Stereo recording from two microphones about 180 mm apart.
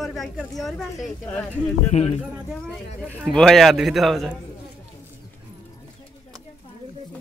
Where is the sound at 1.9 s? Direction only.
35° left (ahead or behind).